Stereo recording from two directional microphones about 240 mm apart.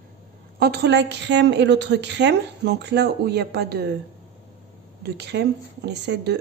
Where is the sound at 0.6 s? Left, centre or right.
Right.